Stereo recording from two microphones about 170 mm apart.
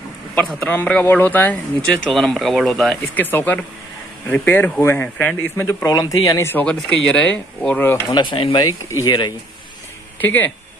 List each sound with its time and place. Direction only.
0.4 s speech: 5° left (ahead or behind)
8.1 s speech: 25° left (ahead or behind)